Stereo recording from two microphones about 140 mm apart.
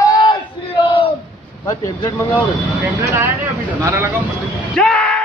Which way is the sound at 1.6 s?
25° left (ahead or behind).